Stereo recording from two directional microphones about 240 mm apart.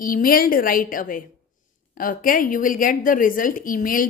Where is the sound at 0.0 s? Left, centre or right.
Left.